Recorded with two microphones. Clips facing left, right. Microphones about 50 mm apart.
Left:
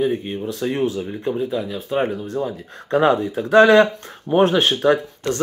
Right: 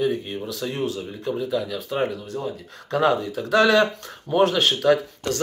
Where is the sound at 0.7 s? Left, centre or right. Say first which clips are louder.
Left 6 dB; left.